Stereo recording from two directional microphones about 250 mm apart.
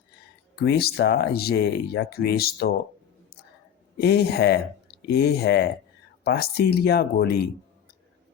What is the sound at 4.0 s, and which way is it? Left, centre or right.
Speech, left.